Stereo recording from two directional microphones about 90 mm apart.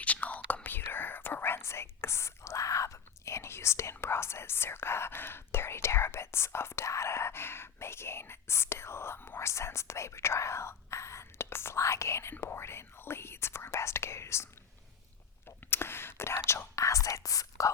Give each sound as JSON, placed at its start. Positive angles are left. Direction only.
{"t": 0.0, "sound": "whispering", "side_deg": 15}
{"t": 15.4, "sound": "whispering", "side_deg": 25}